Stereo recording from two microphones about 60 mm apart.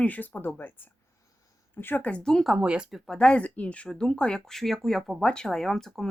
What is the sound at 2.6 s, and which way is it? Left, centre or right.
Speech, centre.